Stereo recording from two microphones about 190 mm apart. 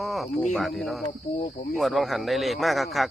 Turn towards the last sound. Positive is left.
turn(degrees=0)  # may be behind; listen again after turning